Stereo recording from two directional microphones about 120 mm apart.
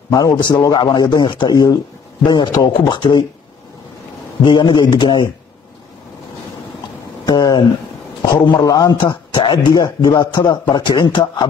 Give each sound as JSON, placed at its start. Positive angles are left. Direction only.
{"t": 0.1, "sound": "a man's voice", "side_deg": 30}
{"t": 4.4, "sound": "a man's voice", "side_deg": 40}
{"t": 7.2, "sound": "a man's voice", "side_deg": 35}